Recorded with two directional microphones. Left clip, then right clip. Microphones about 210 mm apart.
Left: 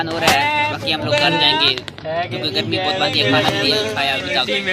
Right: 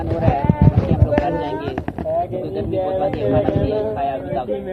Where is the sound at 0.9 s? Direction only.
15° left (ahead or behind).